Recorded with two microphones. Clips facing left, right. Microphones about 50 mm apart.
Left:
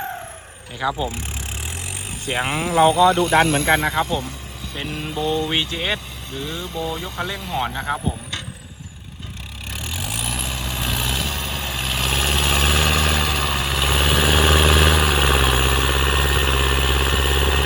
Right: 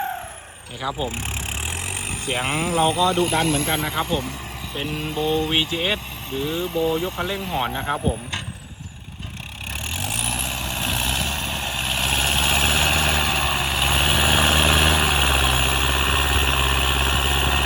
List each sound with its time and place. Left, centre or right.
0.8 s speech: centre
2.7 s speech: centre
3.3 s speech: left
3.9 s speech: centre
10.1 s vehicle: right
13.0 s vehicle: centre